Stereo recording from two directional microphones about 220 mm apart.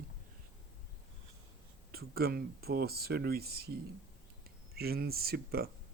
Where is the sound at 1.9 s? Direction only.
45° right (ahead or behind).